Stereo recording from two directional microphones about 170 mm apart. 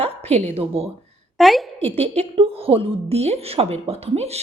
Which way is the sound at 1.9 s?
40° right (ahead or behind).